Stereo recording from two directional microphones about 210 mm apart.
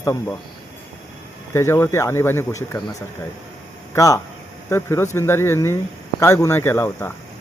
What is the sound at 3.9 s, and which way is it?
Speech, 15° left (ahead or behind).